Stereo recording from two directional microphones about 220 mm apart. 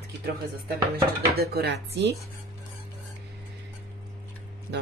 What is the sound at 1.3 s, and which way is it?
Speech, 45° right (ahead or behind).